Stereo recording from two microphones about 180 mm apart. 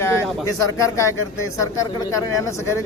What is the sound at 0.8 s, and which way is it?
Speech, 15° left (ahead or behind).